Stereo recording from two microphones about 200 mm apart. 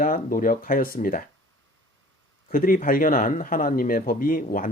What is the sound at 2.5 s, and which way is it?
Speech, 45° left (ahead or behind).